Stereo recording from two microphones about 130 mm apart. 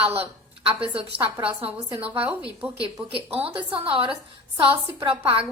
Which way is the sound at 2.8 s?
45° right (ahead or behind).